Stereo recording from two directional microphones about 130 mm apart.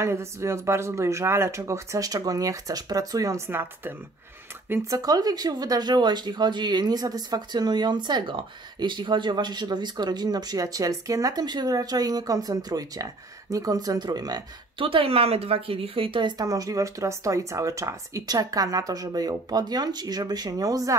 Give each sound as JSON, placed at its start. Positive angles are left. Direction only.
{"t": 0.0, "sound": "speech", "side_deg": -20}
{"t": 4.8, "sound": "speech", "side_deg": -30}
{"t": 14.8, "sound": "speech", "side_deg": -45}